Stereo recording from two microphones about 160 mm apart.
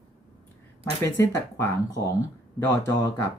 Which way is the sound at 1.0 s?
15° left (ahead or behind).